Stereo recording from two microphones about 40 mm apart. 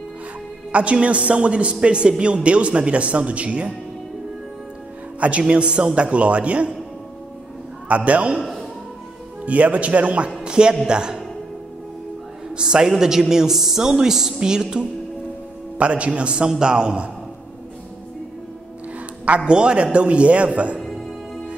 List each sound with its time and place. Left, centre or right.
0.7 s a man's voice: right
5.4 s a man's voice: right
7.9 s a man's voice: right
9.5 s a man's voice: right; by 11.2 s centre
12.5 s a man's voice: right
15.8 s a man's voice: right
19.2 s a man's voice: right
20.8 s music: centre